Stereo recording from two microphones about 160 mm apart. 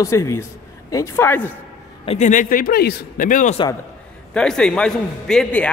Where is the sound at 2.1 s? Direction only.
50° left (ahead or behind).